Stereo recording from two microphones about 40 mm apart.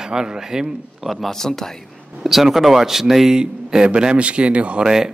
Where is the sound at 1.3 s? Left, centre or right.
Centre.